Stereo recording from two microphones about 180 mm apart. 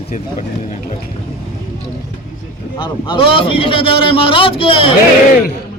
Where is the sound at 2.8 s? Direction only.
25° left (ahead or behind).